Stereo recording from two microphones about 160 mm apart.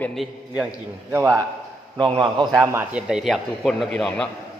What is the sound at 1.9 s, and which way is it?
Speech, 30° right (ahead or behind).